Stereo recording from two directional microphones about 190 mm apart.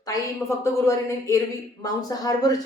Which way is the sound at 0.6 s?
15° left (ahead or behind).